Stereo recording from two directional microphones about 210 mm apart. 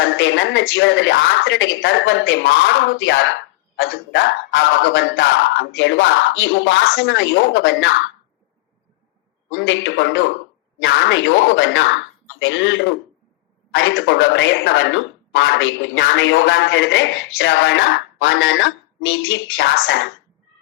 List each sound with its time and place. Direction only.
0.0 s speech: 60° left (ahead or behind)
9.5 s speech: 65° left (ahead or behind)